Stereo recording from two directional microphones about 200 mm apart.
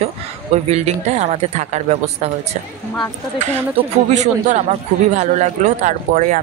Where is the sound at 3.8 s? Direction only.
35° right (ahead or behind).